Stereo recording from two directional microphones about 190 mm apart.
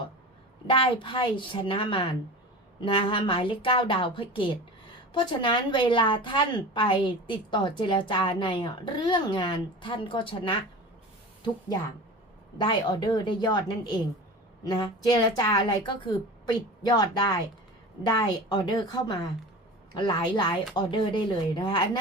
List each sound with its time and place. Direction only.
0.7 s a woman's voice: 25° left (ahead or behind)
12.5 s a woman's voice: 25° left (ahead or behind)